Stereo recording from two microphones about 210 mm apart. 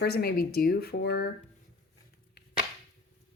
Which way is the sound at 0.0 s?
50° left (ahead or behind).